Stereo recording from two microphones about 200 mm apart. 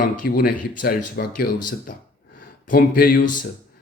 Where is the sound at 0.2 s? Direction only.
50° left (ahead or behind).